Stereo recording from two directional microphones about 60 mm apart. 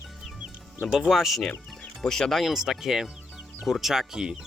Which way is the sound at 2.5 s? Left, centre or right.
Centre.